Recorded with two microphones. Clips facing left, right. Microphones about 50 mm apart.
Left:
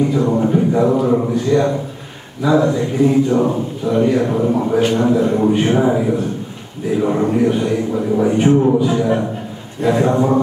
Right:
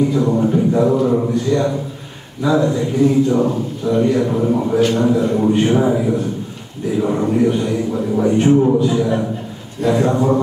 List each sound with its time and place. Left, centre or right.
0.4 s a sound: centre
2.5 s speech: centre
3.8 s speech: centre